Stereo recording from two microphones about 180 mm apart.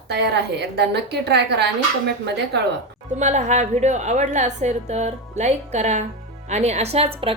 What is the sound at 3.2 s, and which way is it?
A woman's voice, 40° right (ahead or behind).